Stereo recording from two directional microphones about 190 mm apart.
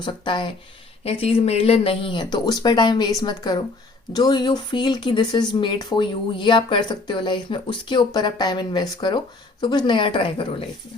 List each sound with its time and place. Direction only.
0.0 s speech: 25° left (ahead or behind)